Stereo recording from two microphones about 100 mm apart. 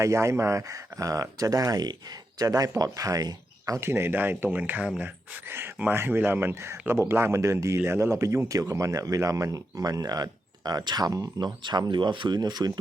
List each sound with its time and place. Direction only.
0.0 s speech: 30° right (ahead or behind)